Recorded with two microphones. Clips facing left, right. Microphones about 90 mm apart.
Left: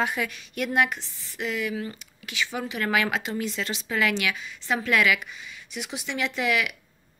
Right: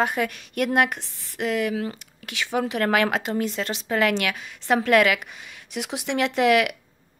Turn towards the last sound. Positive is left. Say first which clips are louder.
# right 7 dB
turn(degrees=-60)  # may be behind; listen again after turning